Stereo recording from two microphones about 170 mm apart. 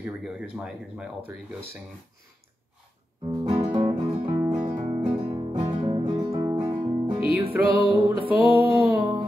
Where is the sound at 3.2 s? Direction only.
35° right (ahead or behind).